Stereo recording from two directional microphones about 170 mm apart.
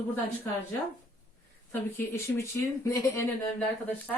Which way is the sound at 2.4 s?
15° left (ahead or behind).